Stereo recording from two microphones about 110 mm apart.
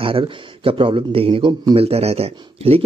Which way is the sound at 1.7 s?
65° right (ahead or behind).